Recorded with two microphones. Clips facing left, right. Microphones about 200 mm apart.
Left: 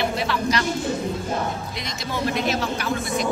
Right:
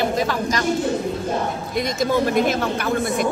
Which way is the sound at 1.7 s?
50° right (ahead or behind).